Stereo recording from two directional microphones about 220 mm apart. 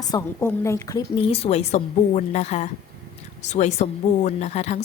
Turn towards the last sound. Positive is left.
turn(degrees=30)  # may be behind; listen again after turning